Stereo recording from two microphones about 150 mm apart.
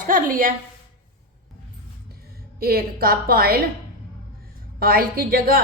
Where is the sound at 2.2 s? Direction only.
90° right.